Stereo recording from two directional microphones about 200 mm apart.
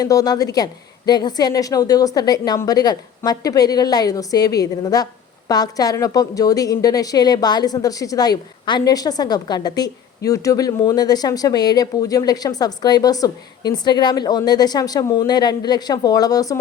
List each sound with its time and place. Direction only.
0.0 s speech: 20° left (ahead or behind)